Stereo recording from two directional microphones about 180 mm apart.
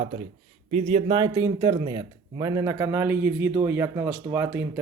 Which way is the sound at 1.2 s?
25° right (ahead or behind).